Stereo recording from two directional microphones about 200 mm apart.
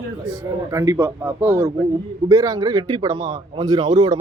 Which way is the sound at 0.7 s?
15° right (ahead or behind).